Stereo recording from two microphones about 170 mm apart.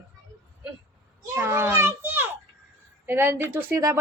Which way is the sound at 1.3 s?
15° right (ahead or behind).